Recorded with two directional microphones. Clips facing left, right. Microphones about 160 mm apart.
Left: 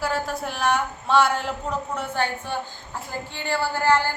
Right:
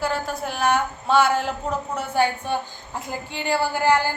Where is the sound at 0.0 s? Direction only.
Centre (ahead or behind).